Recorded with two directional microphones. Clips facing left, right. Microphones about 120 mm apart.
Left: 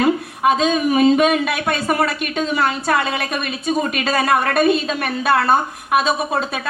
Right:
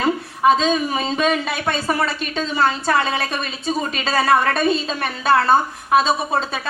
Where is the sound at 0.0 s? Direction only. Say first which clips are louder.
Left 1 dB; 30° right (ahead or behind).